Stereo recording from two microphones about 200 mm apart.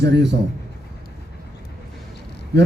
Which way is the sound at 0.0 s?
60° right (ahead or behind).